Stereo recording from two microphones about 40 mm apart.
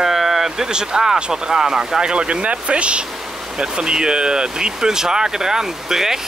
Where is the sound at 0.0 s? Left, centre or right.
Centre.